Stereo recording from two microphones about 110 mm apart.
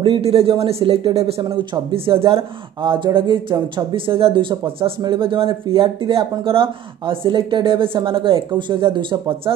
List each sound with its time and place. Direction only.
0.0 s speech: 55° right (ahead or behind)